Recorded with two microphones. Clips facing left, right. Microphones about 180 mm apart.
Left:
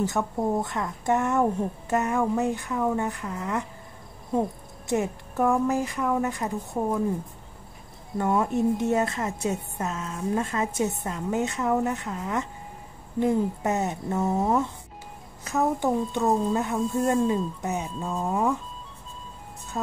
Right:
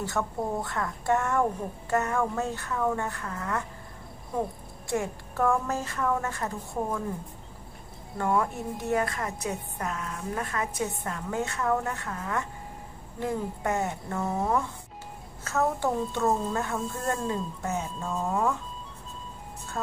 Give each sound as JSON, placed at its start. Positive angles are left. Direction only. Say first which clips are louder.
{"t": 0.0, "sound": "a woman's voice", "louder": "left 4 dB", "side_deg": 20}
{"t": 4.8, "sound": "speech", "louder": "left 4 dB", "side_deg": 20}
{"t": 8.2, "sound": "a woman's voice", "louder": "left 4 dB", "side_deg": 20}